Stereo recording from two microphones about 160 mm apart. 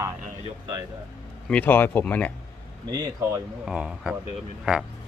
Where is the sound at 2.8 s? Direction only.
25° right (ahead or behind).